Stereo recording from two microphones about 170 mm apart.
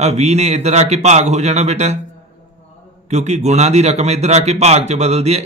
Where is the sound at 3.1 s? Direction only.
40° right (ahead or behind).